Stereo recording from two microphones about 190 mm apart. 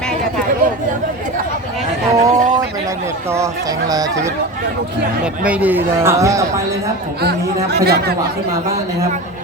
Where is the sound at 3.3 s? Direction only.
15° right (ahead or behind).